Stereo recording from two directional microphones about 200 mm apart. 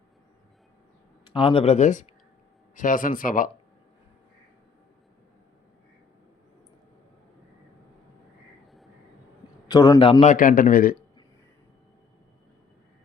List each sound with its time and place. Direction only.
1.2 s a man's voice: 25° left (ahead or behind); by 3.5 s 40° left (ahead or behind)
9.6 s a man's voice: 20° left (ahead or behind); by 10.9 s 45° left (ahead or behind)